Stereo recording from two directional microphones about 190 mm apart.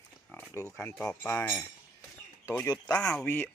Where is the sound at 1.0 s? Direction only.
10° left (ahead or behind).